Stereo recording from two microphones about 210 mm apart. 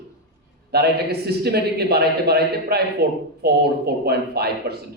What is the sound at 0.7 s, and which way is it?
A man's voice, 50° right (ahead or behind).